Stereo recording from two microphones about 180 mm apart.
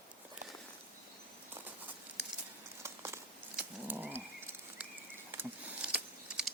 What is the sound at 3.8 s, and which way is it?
Dog, 10° right (ahead or behind).